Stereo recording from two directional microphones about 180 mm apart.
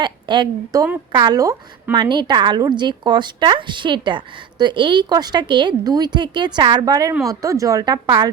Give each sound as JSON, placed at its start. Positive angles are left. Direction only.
{"t": 0.0, "sound": "a woman's voice", "side_deg": -25}